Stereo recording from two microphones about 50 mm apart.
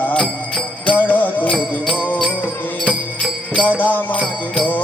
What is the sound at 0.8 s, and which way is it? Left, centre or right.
Music, left.